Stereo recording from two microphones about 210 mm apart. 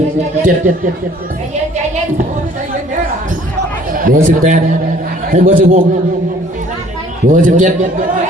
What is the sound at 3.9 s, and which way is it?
A man's voice, 40° right (ahead or behind).